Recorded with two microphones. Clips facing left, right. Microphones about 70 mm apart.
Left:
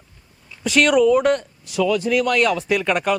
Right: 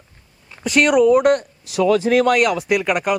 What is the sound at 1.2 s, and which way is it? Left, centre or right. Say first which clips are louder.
Speech: right 3 dB; right.